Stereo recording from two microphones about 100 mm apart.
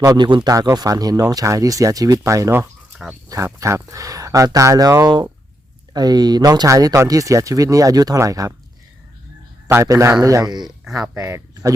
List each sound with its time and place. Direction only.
0.2 s speech: 50° right (ahead or behind); by 8.5 s 35° right (ahead or behind)
9.6 s speech: 30° right (ahead or behind)
10.8 s speech: 5° right (ahead or behind)
11.3 s speech: 30° right (ahead or behind)